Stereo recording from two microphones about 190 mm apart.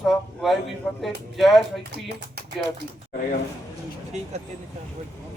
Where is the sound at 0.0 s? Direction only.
Centre (ahead or behind).